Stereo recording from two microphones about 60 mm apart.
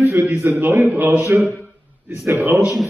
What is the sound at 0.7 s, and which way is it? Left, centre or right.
Speech, right.